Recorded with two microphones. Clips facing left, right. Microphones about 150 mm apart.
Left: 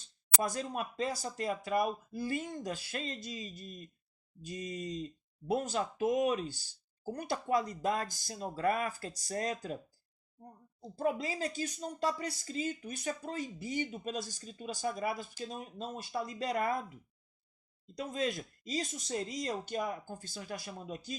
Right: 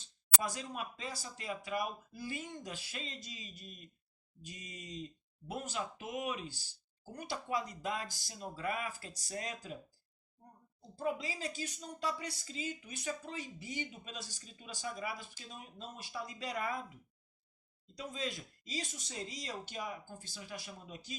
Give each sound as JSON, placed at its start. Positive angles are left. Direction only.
{"t": 0.4, "sound": "speech", "side_deg": 50}
{"t": 7.1, "sound": "speech", "side_deg": 55}
{"t": 10.9, "sound": "speech", "side_deg": 55}
{"t": 17.9, "sound": "speech", "side_deg": 50}